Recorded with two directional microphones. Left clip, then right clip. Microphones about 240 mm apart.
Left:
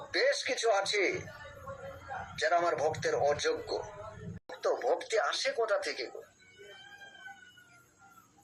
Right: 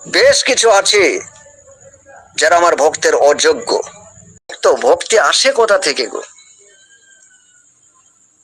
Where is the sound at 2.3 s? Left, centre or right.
Right.